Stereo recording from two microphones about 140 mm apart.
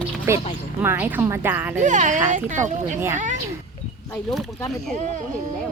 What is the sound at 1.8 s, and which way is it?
Speech, 60° right (ahead or behind).